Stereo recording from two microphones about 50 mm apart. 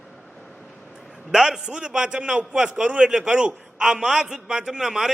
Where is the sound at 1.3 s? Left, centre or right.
Centre.